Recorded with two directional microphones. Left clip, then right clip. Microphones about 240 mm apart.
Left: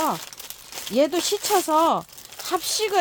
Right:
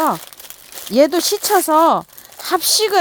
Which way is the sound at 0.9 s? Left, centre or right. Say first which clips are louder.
Right 7 dB; right.